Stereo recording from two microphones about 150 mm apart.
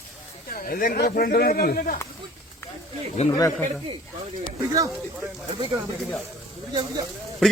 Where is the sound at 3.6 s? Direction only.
45° right (ahead or behind).